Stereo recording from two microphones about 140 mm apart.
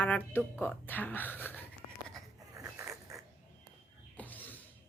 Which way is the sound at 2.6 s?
25° right (ahead or behind).